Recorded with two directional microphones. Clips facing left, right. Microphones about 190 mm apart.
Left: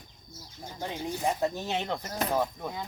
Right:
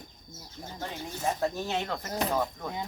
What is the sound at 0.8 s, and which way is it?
Speech, 15° left (ahead or behind).